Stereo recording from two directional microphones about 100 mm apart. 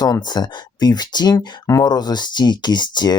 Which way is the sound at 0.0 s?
45° left (ahead or behind).